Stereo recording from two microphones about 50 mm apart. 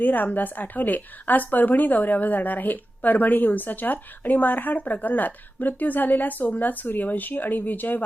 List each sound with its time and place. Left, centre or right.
0.0 s a woman's voice: left